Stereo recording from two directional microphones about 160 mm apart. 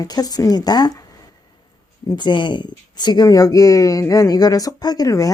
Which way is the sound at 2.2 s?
30° left (ahead or behind).